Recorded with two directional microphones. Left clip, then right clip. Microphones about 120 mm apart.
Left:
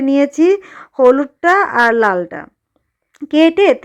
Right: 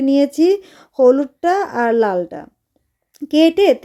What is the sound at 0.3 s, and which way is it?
Speech, 10° right (ahead or behind).